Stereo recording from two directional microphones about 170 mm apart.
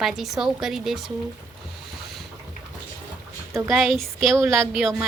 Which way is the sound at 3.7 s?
Centre (ahead or behind).